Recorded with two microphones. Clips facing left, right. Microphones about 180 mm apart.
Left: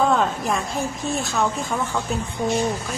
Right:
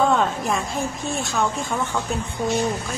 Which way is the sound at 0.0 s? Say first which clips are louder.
Even; centre (ahead or behind).